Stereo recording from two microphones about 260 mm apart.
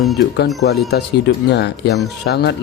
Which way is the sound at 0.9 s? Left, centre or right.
Left.